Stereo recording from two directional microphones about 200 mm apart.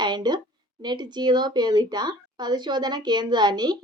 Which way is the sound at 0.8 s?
20° right (ahead or behind).